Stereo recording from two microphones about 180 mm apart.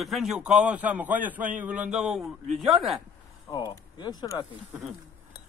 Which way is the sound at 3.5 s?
25° left (ahead or behind).